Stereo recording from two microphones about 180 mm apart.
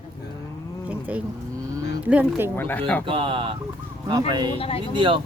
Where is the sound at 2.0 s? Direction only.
10° right (ahead or behind).